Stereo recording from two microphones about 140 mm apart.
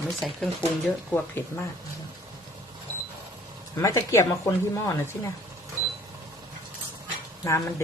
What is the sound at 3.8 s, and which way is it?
Speech, 20° left (ahead or behind).